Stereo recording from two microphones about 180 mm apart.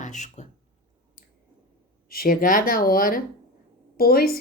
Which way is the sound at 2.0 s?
55° left (ahead or behind).